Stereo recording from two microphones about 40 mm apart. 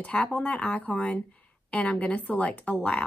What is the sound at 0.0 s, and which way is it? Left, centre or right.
Speech, left.